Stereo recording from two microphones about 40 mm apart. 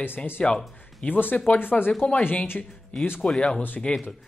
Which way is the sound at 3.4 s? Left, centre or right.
Left.